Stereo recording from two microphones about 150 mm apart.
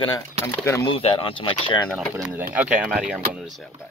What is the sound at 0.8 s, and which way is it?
Speech, 35° left (ahead or behind).